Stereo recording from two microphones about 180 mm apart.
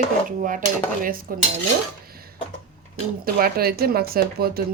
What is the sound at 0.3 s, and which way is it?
Speech, 45° right (ahead or behind).